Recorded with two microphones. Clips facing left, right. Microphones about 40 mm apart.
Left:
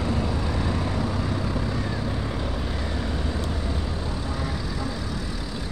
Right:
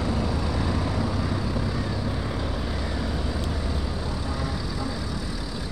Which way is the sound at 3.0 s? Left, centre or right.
Centre.